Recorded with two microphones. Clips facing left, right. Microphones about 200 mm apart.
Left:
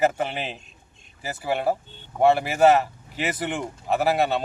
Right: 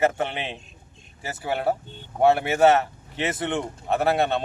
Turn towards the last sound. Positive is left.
turn(degrees=0)  # may be behind; listen again after turning